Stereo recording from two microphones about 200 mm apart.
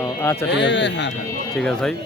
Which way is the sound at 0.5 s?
60° left (ahead or behind).